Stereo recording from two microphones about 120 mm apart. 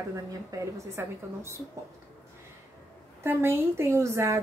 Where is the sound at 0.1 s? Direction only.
30° right (ahead or behind).